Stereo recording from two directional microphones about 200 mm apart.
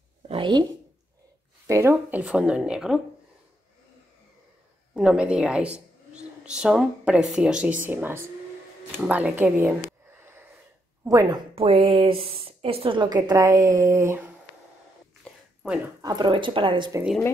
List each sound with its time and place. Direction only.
0.3 s a woman's voice: 25° right (ahead or behind)
1.7 s a woman's voice: 15° right (ahead or behind)
4.9 s speech: 5° right (ahead or behind)
11.5 s a woman's voice: 25° right (ahead or behind)
15.6 s a woman's voice: centre (ahead or behind)
16.0 s a woman's voice: 20° right (ahead or behind)